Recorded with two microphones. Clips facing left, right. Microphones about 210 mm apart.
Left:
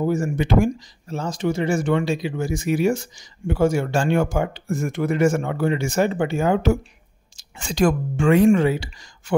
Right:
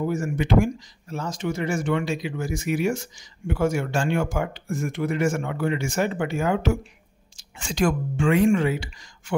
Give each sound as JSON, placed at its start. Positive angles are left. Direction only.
{"t": 0.0, "sound": "speech", "side_deg": 30}